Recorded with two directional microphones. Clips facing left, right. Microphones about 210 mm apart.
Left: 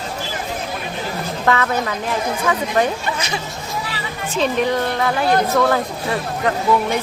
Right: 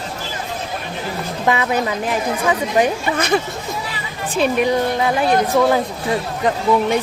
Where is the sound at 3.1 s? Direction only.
55° right (ahead or behind).